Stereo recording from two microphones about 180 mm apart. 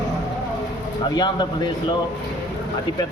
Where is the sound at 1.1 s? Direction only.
25° left (ahead or behind).